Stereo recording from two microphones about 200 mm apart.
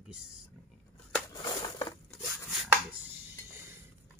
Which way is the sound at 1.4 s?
20° left (ahead or behind).